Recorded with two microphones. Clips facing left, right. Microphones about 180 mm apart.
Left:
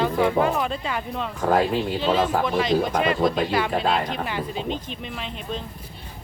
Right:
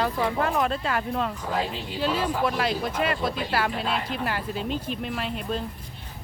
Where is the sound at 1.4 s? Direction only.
50° left (ahead or behind).